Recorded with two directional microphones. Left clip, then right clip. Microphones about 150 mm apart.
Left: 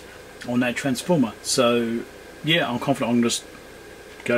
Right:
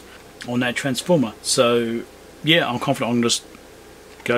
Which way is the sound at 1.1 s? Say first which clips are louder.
Right 4 dB; 30° right (ahead or behind).